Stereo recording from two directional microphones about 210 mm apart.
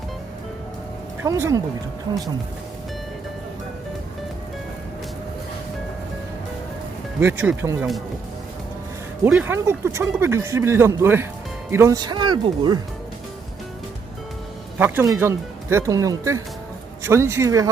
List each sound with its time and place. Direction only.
1.2 s speech: 15° right (ahead or behind)
7.2 s speech: 10° right (ahead or behind)
9.2 s speech: 10° right (ahead or behind)
14.8 s speech: 10° right (ahead or behind)